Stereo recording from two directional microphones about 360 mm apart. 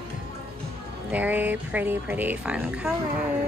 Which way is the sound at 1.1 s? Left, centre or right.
Centre.